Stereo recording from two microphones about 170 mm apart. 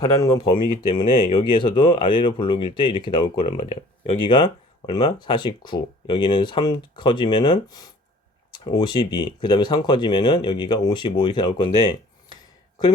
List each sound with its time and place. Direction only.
0.0 s speech: 20° left (ahead or behind)
0.6 s speech: 50° left (ahead or behind)
0.9 s speech: 30° left (ahead or behind)